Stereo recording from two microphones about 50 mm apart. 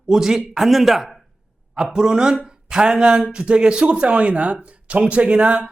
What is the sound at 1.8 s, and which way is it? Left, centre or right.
A man's voice, centre.